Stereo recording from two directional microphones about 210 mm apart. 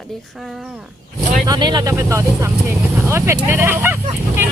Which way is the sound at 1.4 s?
20° right (ahead or behind).